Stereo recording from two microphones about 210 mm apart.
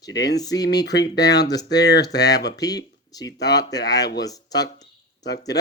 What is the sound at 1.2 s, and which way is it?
Speech, 55° left (ahead or behind).